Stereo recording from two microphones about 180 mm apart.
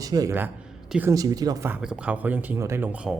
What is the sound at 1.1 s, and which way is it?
Speech, 20° right (ahead or behind).